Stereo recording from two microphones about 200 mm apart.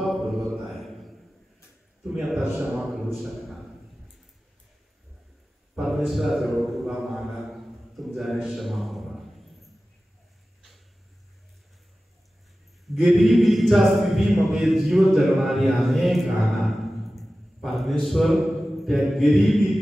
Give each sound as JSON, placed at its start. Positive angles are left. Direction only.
{"t": 0.0, "sound": "mantra", "side_deg": 0}
{"t": 2.1, "sound": "speech", "side_deg": 0}
{"t": 5.8, "sound": "a sound", "side_deg": 0}
{"t": 12.9, "sound": "a man's voice", "side_deg": 0}